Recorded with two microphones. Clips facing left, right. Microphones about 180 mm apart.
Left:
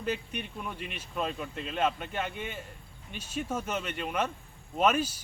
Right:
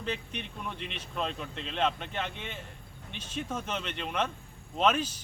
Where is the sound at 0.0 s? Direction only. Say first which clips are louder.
Left 2 dB; 10° left (ahead or behind).